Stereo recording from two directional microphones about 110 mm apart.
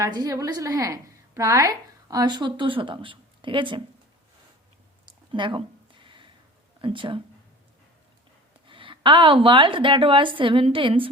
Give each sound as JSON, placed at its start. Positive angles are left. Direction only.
{"t": 0.0, "sound": "a woman's voice", "side_deg": -30}
{"t": 5.3, "sound": "a sound", "side_deg": -50}
{"t": 6.8, "sound": "speech", "side_deg": -50}
{"t": 8.6, "sound": "speech", "side_deg": -50}